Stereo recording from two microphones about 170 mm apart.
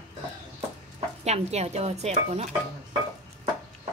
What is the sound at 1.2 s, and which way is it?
Speech, 40° right (ahead or behind).